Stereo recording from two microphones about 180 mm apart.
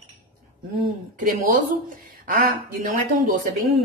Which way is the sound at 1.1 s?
50° right (ahead or behind).